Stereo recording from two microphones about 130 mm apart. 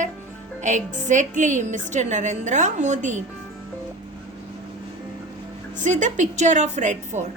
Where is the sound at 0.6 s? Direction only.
70° right (ahead or behind).